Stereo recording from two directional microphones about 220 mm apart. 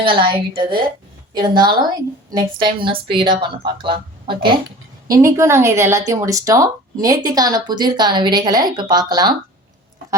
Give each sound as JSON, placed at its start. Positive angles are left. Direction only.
{"t": 0.0, "sound": "a woman's voice", "side_deg": -20}